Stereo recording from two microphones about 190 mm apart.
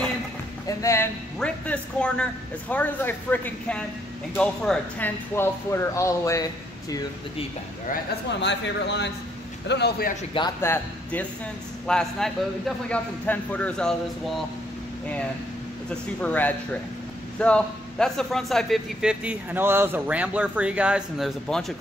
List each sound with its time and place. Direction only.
0.7 s speech: 15° left (ahead or behind)
1.4 s a man's voice: 5° left (ahead or behind); by 7.4 s 20° left (ahead or behind)
7.9 s a man's voice: 65° left (ahead or behind)
10.6 s a man's voice: 10° left (ahead or behind)
16.2 s a man's voice: 10° left (ahead or behind)